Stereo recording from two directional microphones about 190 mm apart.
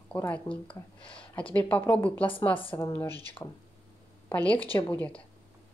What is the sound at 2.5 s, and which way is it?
Speech, 25° left (ahead or behind).